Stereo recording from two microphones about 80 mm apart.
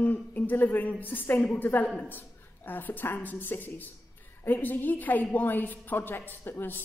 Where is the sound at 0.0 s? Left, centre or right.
Centre.